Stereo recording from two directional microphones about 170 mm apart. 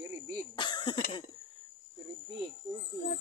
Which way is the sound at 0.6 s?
25° left (ahead or behind).